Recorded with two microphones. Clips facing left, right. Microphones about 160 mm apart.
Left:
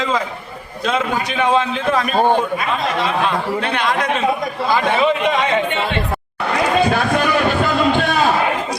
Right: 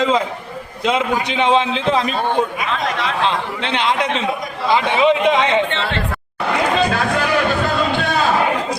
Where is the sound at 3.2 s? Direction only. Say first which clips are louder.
Left 1 dB; 25° right (ahead or behind).